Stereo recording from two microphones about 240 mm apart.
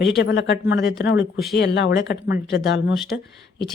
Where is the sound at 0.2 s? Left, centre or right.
Left.